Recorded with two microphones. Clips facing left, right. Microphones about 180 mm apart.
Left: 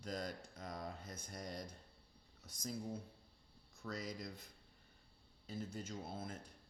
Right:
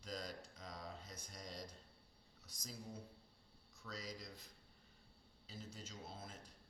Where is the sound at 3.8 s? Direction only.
55° left (ahead or behind).